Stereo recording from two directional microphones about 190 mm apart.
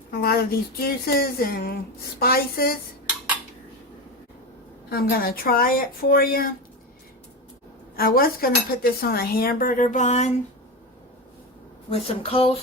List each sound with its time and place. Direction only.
0.1 s speech: 55° left (ahead or behind)
0.8 s cutlery: 55° left (ahead or behind)
4.9 s cutlery: 50° left (ahead or behind)
7.9 s cutlery: 50° left (ahead or behind)
11.9 s speech: 30° left (ahead or behind)